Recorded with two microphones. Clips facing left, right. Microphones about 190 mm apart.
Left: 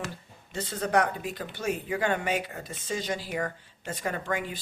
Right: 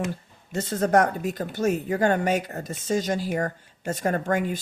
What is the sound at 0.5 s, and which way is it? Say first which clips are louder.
Speech: right 5 dB; 45° right (ahead or behind).